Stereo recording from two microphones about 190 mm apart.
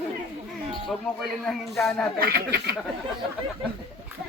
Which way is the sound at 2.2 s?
55° right (ahead or behind).